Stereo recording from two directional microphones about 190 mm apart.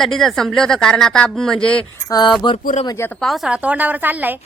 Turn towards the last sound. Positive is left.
turn(degrees=-10)  # may be behind; listen again after turning